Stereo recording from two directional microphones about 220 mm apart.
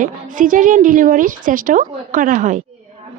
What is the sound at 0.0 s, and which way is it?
A woman's voice, 40° right (ahead or behind).